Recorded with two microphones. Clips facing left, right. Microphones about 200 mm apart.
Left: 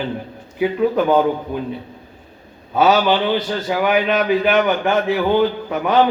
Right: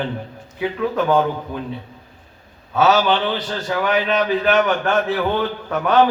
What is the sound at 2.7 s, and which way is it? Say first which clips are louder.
A man's voice: left 1 dB; 15° left (ahead or behind).